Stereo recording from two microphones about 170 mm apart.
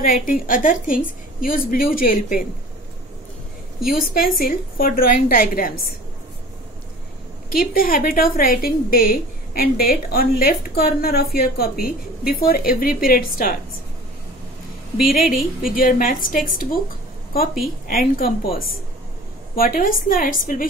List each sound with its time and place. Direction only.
0.0 s a woman's voice: 55° left (ahead or behind)
3.9 s a woman's voice: 55° left (ahead or behind)
7.5 s a woman's voice: 60° left (ahead or behind)
15.0 s a woman's voice: 55° left (ahead or behind)